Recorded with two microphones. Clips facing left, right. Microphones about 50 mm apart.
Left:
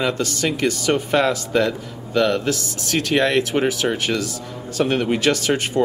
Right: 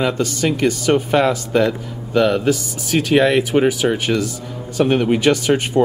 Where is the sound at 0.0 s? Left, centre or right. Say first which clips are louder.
Right 3 dB; centre.